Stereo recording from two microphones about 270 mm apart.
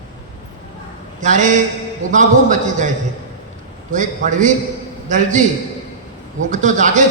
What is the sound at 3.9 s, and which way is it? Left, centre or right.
A man's voice, right.